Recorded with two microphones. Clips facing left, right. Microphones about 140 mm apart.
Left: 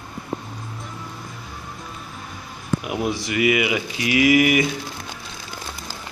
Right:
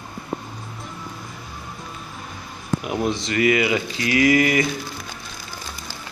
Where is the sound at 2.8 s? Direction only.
10° left (ahead or behind).